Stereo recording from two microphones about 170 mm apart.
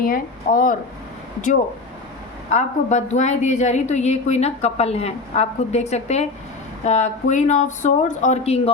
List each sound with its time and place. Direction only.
0.0 s speech: 55° left (ahead or behind)
2.5 s a woman's voice: 45° left (ahead or behind)